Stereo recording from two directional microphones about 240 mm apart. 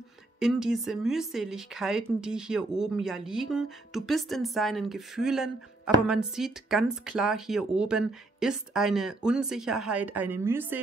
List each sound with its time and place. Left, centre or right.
0.4 s speech: centre